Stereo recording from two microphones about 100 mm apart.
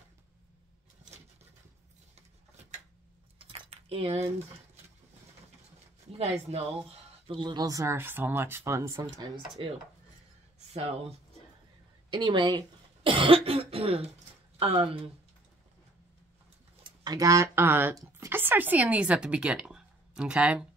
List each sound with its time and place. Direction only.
3.3 s a sound: 80° right
6.5 s speech: 90° right
7.2 s speech: 50° right (ahead or behind); by 8.9 s 30° right (ahead or behind)
9.6 s speech: 65° right (ahead or behind)
10.7 s speech: 90° right
12.1 s speech: 50° right (ahead or behind); by 15.0 s 70° right (ahead or behind)
16.8 s speech: 40° right (ahead or behind); by 20.6 s 10° right (ahead or behind)